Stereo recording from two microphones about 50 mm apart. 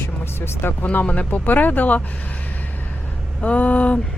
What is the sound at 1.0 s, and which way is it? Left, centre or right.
Speech, left.